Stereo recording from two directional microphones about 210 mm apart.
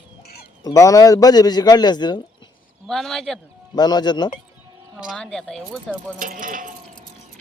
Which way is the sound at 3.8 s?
20° left (ahead or behind).